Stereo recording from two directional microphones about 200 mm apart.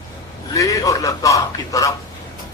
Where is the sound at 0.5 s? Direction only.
15° left (ahead or behind).